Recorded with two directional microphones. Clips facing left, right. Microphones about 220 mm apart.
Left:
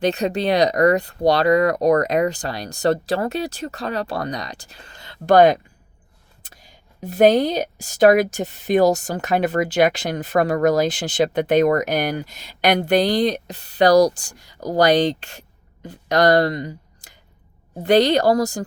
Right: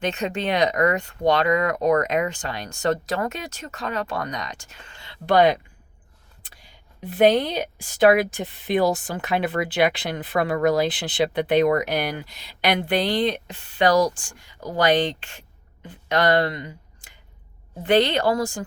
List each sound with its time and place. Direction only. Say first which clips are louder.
0.0 s a woman's voice: left 5 dB; 35° left (ahead or behind)